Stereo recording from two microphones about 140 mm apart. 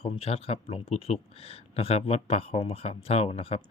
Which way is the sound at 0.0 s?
45° left (ahead or behind).